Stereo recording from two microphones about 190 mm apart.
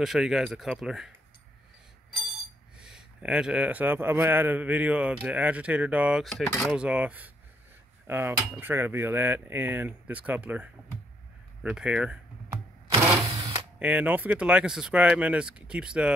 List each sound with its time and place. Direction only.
0.0 s speech: centre (ahead or behind)
2.8 s a man's voice: 5° right (ahead or behind)
11.7 s speech: 5° right (ahead or behind)
13.4 s a sound: 25° right (ahead or behind)
13.7 s speech: 5° right (ahead or behind)